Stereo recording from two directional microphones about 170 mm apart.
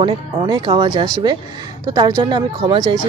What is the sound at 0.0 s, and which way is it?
A woman's voice, 30° right (ahead or behind).